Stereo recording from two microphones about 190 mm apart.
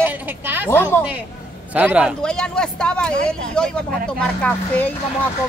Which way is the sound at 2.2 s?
5° left (ahead or behind).